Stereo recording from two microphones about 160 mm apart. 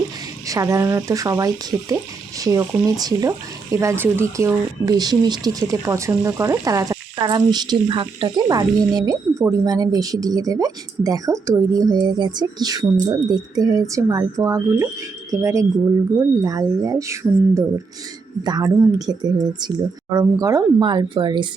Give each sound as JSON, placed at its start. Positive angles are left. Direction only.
{"t": 0.4, "sound": "speech", "side_deg": -20}